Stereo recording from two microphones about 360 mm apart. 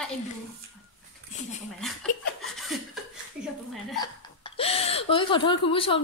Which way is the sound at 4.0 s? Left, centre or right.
Centre.